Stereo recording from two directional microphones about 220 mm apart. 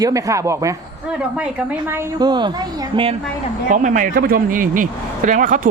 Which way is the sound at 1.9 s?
20° right (ahead or behind).